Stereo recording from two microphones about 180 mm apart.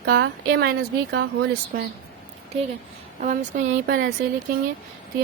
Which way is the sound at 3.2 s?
45° right (ahead or behind).